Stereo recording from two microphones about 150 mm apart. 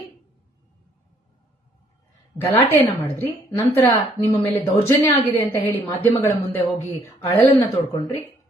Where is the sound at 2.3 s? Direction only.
15° left (ahead or behind).